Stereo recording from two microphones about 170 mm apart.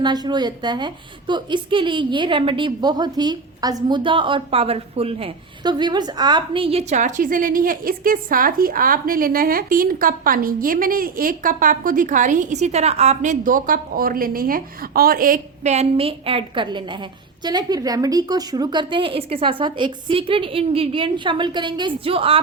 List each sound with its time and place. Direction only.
0.0 s a woman's voice: 25° right (ahead or behind)